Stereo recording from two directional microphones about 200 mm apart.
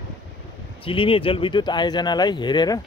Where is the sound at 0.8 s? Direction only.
25° left (ahead or behind).